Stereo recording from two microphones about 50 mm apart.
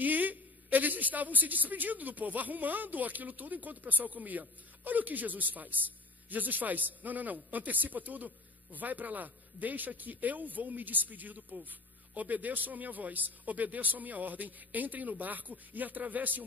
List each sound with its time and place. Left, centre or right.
0.0 s a woman's voice: right